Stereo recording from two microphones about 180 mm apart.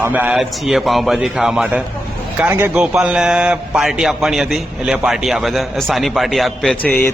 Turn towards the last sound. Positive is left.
turn(degrees=5)  # may be behind; listen again after turning